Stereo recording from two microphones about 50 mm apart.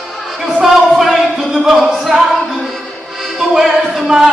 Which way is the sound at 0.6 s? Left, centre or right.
Centre.